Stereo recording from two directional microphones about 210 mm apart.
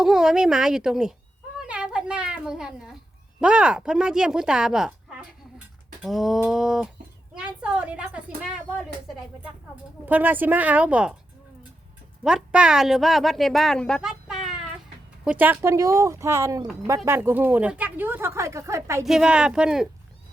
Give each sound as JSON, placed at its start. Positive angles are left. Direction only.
{"t": 0.0, "sound": "a woman's voice", "side_deg": -5}
{"t": 10.1, "sound": "speech", "side_deg": -10}
{"t": 12.2, "sound": "speech", "side_deg": -5}
{"t": 19.0, "sound": "speech", "side_deg": -5}